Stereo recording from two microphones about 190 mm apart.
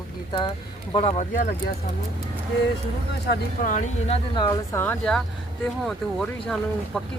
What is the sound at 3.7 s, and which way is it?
Speech, 40° left (ahead or behind).